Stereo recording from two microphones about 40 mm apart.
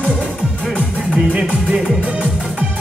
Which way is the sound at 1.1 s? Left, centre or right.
Right.